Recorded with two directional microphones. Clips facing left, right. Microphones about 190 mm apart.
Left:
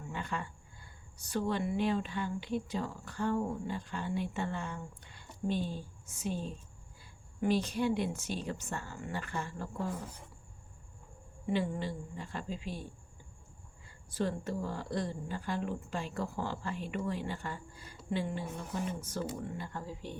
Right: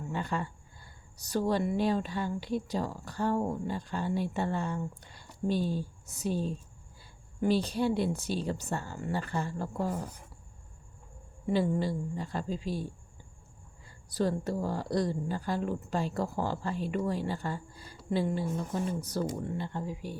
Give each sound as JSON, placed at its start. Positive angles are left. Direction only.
{"t": 0.1, "sound": "a sound", "side_deg": -35}
{"t": 1.3, "sound": "speech", "side_deg": -40}
{"t": 11.4, "sound": "speech", "side_deg": -35}